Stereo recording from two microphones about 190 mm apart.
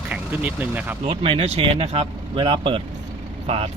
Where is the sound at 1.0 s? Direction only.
30° right (ahead or behind).